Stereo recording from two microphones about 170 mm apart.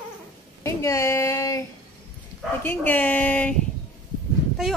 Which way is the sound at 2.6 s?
10° left (ahead or behind).